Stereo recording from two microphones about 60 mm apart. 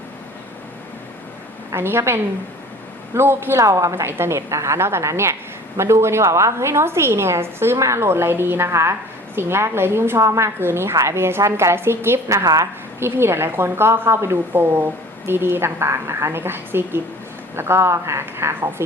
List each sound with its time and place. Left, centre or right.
1.7 s a woman's voice: right
3.6 s a woman's voice: right
14.5 s a woman's voice: right